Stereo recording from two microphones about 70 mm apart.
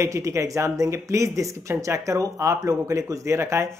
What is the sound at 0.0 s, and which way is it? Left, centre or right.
Speech, right.